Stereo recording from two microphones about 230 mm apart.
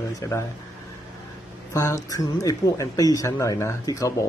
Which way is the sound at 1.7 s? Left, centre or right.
Centre.